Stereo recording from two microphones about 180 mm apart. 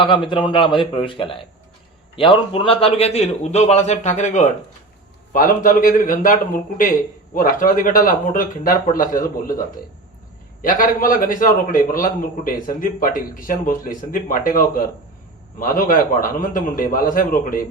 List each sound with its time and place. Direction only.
0.0 s a man's voice: 25° left (ahead or behind); by 6.3 s 50° left (ahead or behind)
7.3 s a man's voice: 50° left (ahead or behind)
10.6 s a man's voice: 50° left (ahead or behind)